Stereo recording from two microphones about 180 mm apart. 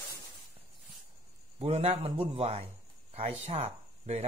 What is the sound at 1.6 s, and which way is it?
A man's voice, 35° right (ahead or behind).